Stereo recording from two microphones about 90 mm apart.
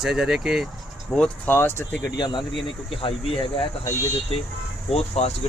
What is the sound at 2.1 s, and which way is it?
Speech, 55° left (ahead or behind).